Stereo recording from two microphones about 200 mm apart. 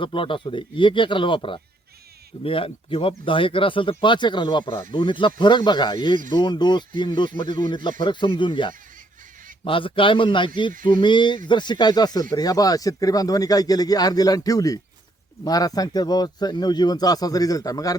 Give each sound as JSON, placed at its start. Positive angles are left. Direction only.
{"t": 0.0, "sound": "speech", "side_deg": 25}